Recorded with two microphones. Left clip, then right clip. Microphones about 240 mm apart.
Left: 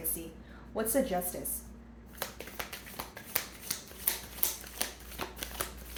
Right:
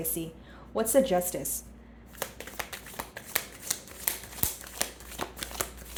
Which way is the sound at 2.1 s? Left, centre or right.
Right.